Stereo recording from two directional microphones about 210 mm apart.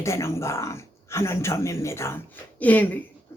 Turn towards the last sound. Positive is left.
turn(degrees=10)  # may be behind; listen again after turning